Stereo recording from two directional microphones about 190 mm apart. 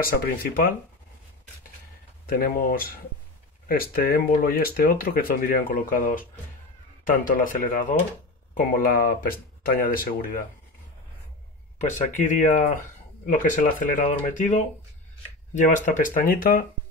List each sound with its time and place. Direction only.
0.0 s speech: 50° left (ahead or behind)
2.2 s speech: 50° left (ahead or behind)
11.8 s speech: 40° left (ahead or behind)